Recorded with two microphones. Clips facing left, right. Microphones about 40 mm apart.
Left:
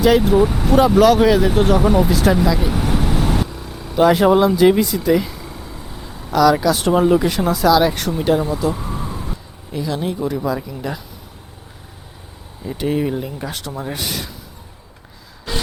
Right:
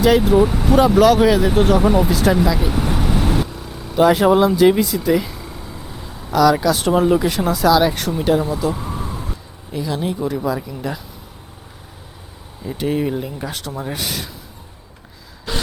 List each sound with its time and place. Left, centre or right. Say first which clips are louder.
0.0 s speech: even; centre
12.6 s speech: even; centre